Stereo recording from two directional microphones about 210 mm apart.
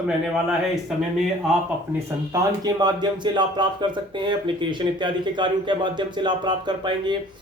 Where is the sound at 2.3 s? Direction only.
20° right (ahead or behind).